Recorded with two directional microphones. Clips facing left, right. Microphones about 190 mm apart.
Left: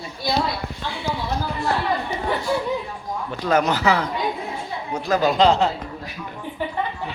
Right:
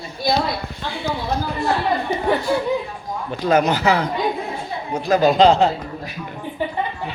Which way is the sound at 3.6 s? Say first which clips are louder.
Right 2 dB; 20° right (ahead or behind).